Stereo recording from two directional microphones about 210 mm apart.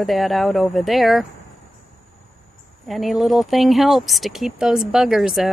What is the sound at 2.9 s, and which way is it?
Speech, centre (ahead or behind).